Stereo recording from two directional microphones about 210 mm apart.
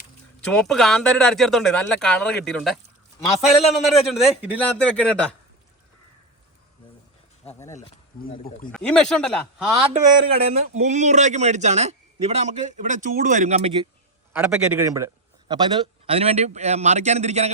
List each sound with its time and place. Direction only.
0.4 s speech: 5° left (ahead or behind)
7.7 s speech: 40° left (ahead or behind)
8.7 s speech: 5° left (ahead or behind)
10.3 s speech: 30° right (ahead or behind)
14.3 s a man's voice: 5° right (ahead or behind); by 17.5 s 30° right (ahead or behind)